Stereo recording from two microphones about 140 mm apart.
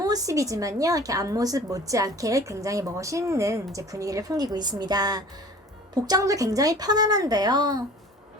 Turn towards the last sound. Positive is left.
turn(degrees=-30)  # may be behind; listen again after turning